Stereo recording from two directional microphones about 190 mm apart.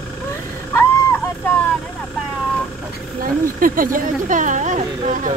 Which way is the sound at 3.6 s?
45° right (ahead or behind).